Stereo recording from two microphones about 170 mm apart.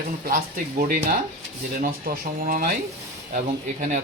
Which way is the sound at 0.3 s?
60° right (ahead or behind).